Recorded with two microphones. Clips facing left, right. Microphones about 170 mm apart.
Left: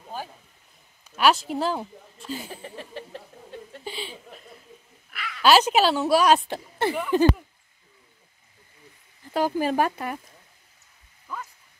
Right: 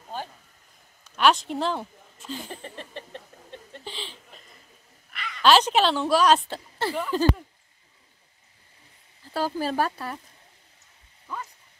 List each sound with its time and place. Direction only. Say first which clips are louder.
1.0 s speech: even; 5° left (ahead or behind)
3.7 s chuckle: left 3 dB; 10° left (ahead or behind)
5.1 s speech: left 1 dB; 5° left (ahead or behind)
9.3 s speech: left 3 dB; 15° left (ahead or behind)